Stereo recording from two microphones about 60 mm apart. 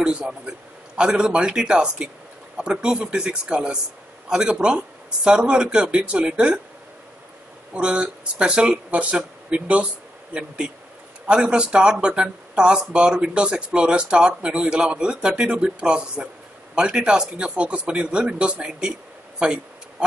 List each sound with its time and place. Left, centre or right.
0.5 s a man's voice: centre
7.7 s speech: centre
11.2 s a man's voice: centre